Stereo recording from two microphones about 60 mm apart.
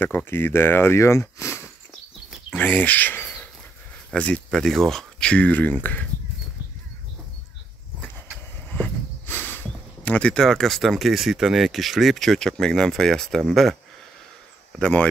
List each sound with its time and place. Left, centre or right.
0.0 s speech: left
1.4 s a sound: left
2.5 s speech: left
4.1 s speech: centre
4.5 s speech: centre
5.3 s speech: left
8.6 s a sound: left
10.1 s speech: centre
14.8 s speech: centre